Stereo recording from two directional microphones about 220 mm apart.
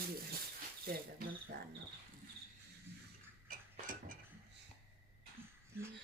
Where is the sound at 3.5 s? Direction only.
40° right (ahead or behind).